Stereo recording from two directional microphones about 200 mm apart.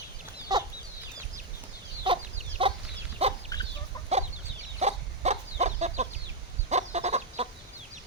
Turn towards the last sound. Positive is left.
turn(degrees=-35)  # may be behind; listen again after turning